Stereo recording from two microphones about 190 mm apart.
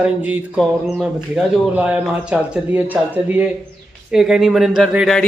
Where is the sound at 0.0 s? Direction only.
10° right (ahead or behind).